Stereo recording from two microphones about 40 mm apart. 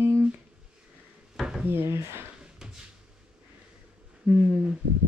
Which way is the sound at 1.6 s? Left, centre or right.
Right.